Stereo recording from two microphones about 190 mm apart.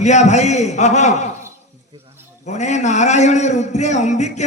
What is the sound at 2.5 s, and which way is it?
A man's voice, 40° left (ahead or behind).